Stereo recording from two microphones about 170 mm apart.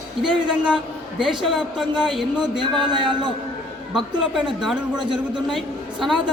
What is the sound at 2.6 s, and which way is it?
Speech, 25° right (ahead or behind).